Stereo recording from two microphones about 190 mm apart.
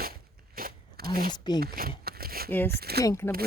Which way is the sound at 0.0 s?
50° right (ahead or behind).